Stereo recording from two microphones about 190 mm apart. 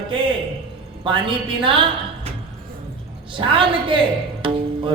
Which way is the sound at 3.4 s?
25° right (ahead or behind).